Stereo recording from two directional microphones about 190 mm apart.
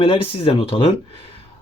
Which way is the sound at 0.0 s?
30° left (ahead or behind).